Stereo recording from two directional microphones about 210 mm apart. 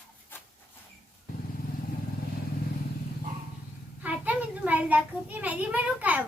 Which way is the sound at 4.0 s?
5° right (ahead or behind).